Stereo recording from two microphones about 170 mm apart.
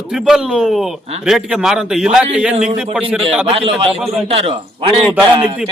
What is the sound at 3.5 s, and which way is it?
A man's voice, 35° right (ahead or behind).